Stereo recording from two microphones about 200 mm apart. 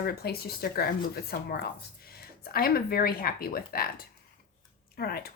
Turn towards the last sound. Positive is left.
turn(degrees=50)  # may be behind; listen again after turning